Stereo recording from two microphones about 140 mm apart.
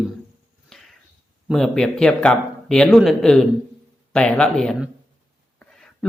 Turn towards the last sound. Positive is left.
turn(degrees=5)  # may be behind; listen again after turning